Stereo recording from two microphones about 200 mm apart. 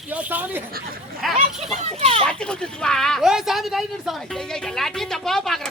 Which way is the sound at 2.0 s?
30° right (ahead or behind).